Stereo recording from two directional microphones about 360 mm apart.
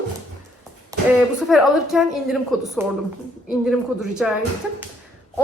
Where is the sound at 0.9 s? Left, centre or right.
Centre.